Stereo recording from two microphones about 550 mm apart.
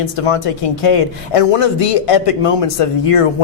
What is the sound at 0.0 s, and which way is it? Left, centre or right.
Speech, left.